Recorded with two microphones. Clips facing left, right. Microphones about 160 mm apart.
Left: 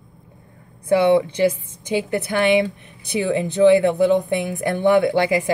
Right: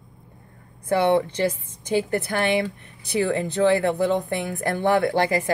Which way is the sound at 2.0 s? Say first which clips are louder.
Left 4 dB; 20° left (ahead or behind).